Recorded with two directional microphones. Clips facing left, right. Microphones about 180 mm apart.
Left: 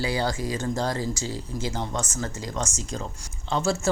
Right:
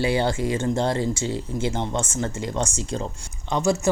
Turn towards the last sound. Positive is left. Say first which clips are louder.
# right 3 dB
turn(degrees=-15)  # may be behind; listen again after turning